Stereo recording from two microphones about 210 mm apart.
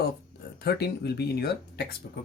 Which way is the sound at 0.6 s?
50° left (ahead or behind).